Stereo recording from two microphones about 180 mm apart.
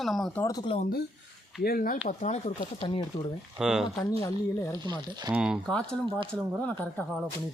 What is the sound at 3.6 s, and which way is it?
Speech, 5° right (ahead or behind).